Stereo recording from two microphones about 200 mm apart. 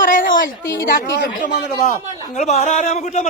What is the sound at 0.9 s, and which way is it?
Speech, 60° left (ahead or behind).